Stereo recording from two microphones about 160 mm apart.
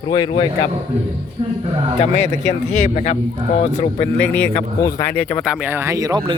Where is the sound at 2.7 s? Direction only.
45° left (ahead or behind).